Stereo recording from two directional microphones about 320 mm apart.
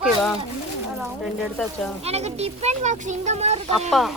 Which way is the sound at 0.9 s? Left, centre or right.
Centre.